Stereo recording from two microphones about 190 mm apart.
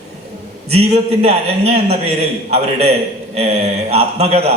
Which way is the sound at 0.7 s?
30° right (ahead or behind).